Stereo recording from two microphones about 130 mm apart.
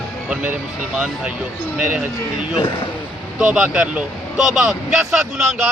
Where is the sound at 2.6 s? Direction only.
40° left (ahead or behind).